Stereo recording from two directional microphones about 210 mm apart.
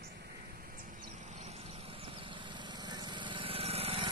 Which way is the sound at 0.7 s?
35° right (ahead or behind).